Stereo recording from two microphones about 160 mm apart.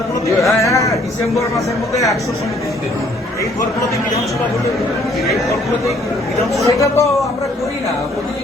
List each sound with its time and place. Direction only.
0.4 s a sound: 20° left (ahead or behind)
1.4 s speech: 20° left (ahead or behind)
6.5 s speech: 20° left (ahead or behind)